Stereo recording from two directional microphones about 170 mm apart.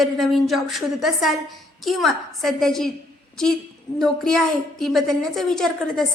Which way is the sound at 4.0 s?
5° left (ahead or behind).